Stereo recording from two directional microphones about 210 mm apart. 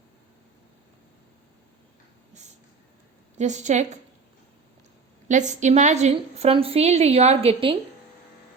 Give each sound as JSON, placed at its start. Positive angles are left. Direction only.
{"t": 3.3, "sound": "a woman's voice", "side_deg": -35}
{"t": 5.3, "sound": "a woman's voice", "side_deg": -35}